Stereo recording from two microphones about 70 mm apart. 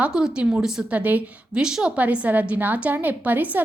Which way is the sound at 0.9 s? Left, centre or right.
Right.